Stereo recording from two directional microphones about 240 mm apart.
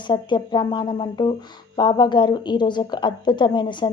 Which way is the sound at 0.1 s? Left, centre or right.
Centre.